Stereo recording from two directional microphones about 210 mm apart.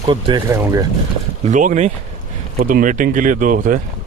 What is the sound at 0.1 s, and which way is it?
Speech, 20° right (ahead or behind).